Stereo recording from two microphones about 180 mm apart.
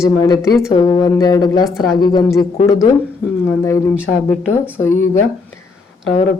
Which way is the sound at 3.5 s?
15° left (ahead or behind).